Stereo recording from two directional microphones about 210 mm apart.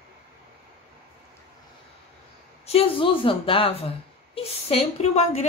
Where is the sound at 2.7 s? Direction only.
25° left (ahead or behind).